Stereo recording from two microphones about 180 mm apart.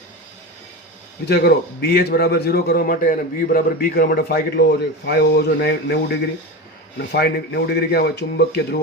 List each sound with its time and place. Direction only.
1.3 s a man's voice: 60° left (ahead or behind)